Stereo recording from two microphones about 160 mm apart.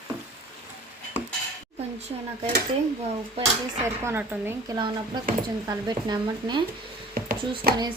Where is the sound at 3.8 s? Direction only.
15° right (ahead or behind).